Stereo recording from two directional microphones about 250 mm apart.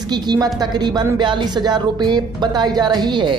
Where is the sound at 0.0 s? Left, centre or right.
Centre.